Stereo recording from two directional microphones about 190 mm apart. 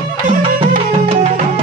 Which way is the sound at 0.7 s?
40° right (ahead or behind).